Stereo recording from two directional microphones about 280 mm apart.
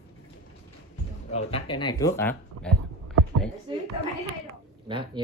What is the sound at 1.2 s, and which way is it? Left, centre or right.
Speech, left.